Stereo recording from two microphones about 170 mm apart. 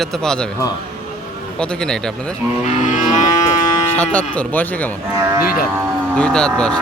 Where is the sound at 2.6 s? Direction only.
45° left (ahead or behind).